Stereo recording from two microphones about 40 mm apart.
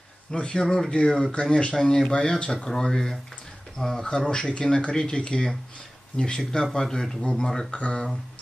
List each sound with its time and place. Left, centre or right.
0.3 s speech: centre
1.7 s speech: centre
7.7 s speech: left